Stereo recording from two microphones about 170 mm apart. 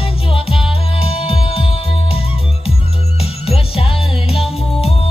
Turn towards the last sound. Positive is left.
turn(degrees=35)  # may be behind; listen again after turning